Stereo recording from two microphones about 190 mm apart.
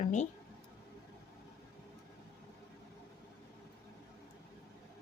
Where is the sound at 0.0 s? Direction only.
40° left (ahead or behind).